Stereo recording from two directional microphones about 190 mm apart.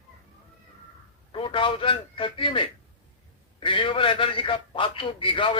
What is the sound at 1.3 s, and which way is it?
A man's voice, 25° left (ahead or behind).